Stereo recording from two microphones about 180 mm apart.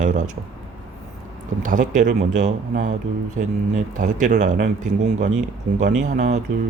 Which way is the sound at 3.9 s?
45° right (ahead or behind).